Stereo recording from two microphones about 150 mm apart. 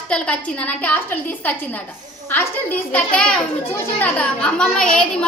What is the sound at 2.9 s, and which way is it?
A woman's voice, 5° left (ahead or behind).